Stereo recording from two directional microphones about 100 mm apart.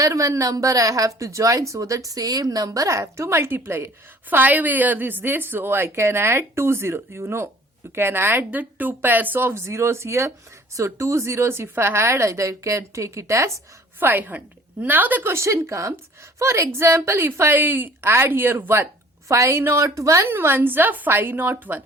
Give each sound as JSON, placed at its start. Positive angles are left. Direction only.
{"t": 0.0, "sound": "a woman's voice", "side_deg": -35}
{"t": 14.0, "sound": "a woman's voice", "side_deg": -20}